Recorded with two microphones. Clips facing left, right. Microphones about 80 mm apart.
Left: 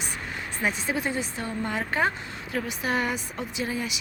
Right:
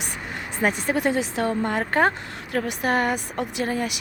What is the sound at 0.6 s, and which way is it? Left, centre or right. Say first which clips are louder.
Speech: right 6 dB; right.